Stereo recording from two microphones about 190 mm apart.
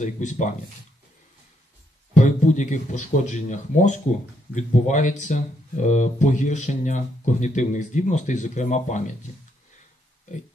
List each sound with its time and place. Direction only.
0.0 s speech: 40° left (ahead or behind)
2.1 s speech: 40° left (ahead or behind)